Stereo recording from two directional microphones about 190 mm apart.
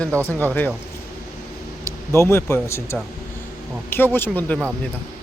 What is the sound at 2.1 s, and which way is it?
Speech, 15° left (ahead or behind).